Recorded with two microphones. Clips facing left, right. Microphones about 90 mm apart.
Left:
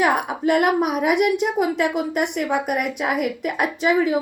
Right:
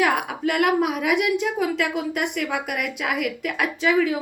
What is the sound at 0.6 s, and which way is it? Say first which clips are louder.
Speech: left 1 dB; 20° left (ahead or behind).